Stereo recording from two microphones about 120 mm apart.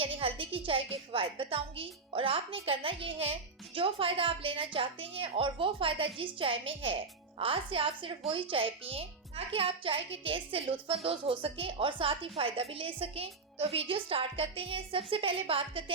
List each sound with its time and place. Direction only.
0.0 s speech: 50° right (ahead or behind)